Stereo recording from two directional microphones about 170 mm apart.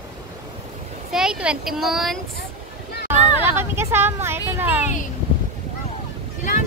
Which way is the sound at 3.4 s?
15° right (ahead or behind).